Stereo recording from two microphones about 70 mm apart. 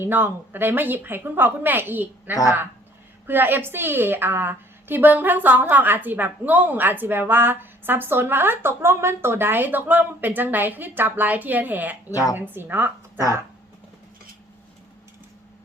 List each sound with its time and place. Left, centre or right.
0.0 s a woman's voice: right
2.3 s a woman's voice: left
3.2 s a woman's voice: right
12.1 s a woman's voice: left
12.4 s a woman's voice: right